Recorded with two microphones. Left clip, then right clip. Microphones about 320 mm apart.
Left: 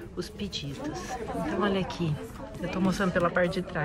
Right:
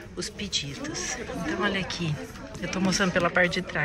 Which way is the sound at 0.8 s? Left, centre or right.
Left.